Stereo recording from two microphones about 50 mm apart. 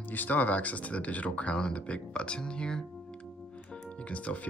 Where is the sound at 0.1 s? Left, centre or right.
Left; by 2.8 s centre.